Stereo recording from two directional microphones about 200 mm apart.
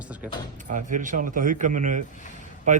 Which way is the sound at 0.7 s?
40° right (ahead or behind).